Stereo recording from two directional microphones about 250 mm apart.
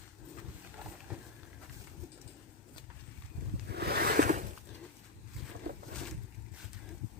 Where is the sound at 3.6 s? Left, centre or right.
Right.